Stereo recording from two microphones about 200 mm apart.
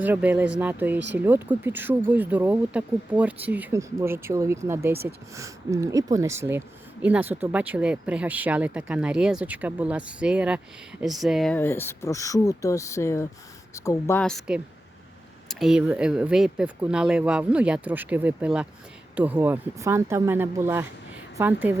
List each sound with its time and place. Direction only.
0.0 s speech: 10° right (ahead or behind)